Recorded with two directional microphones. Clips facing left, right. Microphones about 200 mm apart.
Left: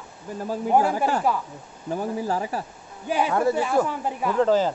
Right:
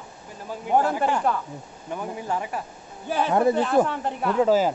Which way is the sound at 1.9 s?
35° left (ahead or behind).